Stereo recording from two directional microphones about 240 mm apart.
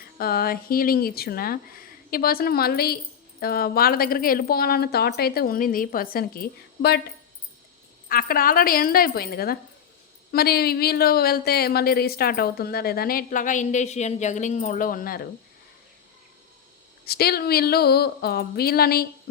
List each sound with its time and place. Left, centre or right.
0.0 s speech: left
8.0 s speech: left
17.1 s speech: left